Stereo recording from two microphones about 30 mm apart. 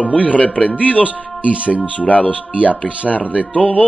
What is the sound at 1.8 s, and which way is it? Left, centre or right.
Speech, left.